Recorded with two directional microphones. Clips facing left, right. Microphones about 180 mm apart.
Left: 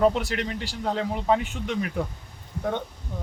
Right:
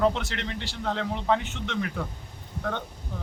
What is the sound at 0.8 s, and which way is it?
Speech, 10° left (ahead or behind).